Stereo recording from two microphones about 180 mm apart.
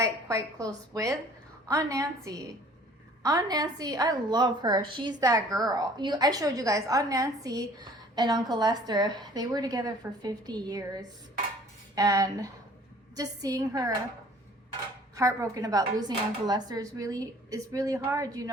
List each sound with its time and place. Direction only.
0.0 s a woman's voice: 20° right (ahead or behind)
15.1 s a woman's voice: 20° right (ahead or behind)